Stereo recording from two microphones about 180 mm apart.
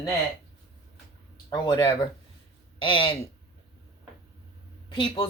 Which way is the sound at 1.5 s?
20° left (ahead or behind).